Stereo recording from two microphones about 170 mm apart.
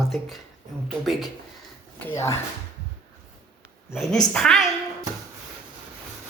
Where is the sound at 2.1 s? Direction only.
15° left (ahead or behind).